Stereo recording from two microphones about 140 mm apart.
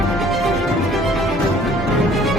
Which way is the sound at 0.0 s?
Centre (ahead or behind).